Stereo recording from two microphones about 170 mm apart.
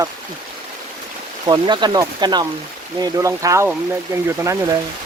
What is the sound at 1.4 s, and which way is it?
Speech, 25° right (ahead or behind).